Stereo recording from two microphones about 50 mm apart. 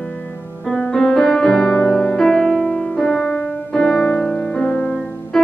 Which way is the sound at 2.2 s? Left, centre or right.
Centre.